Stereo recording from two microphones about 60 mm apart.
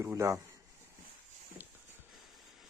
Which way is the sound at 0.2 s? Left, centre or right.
Right.